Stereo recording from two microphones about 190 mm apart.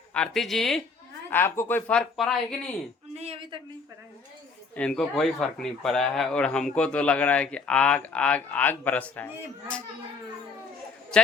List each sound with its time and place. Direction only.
0.1 s speech: 5° left (ahead or behind)
1.3 s speech: 10° left (ahead or behind)
3.2 s speech: 30° right (ahead or behind)
4.7 s speech: 5° left (ahead or behind)
11.1 s a man's voice: 5° left (ahead or behind)